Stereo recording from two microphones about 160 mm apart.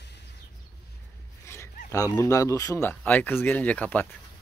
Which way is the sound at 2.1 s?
20° left (ahead or behind).